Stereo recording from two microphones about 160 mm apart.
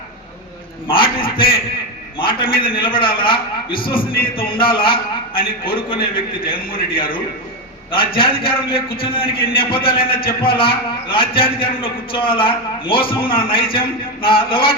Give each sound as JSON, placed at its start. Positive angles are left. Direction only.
{"t": 1.2, "sound": "a man's voice", "side_deg": 35}